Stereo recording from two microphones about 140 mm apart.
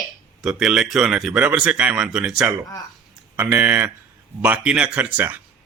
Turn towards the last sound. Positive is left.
turn(degrees=-10)  # may be behind; listen again after turning